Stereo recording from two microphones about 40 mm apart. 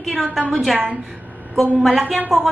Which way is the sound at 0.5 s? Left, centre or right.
Centre.